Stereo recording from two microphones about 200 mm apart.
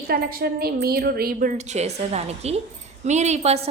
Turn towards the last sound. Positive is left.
turn(degrees=-30)  # may be behind; listen again after turning